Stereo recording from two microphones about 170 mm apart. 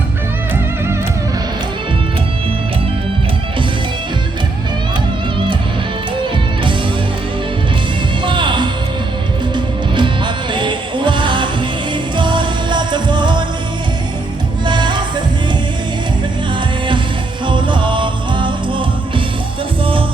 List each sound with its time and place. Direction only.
8.2 s music: 30° right (ahead or behind)
14.6 s music: 25° right (ahead or behind)
17.4 s music: 30° right (ahead or behind)